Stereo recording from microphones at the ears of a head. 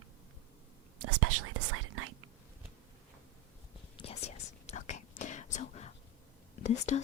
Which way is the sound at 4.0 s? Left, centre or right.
Left.